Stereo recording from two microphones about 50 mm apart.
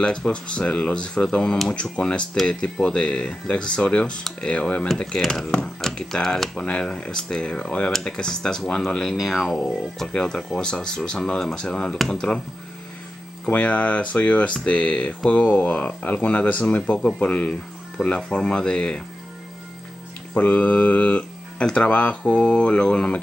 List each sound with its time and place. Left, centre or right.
0.0 s speech: centre
5.1 s speech: centre
6.6 s speech: centre
9.1 s speech: centre
13.5 s speech: left
20.3 s speech: left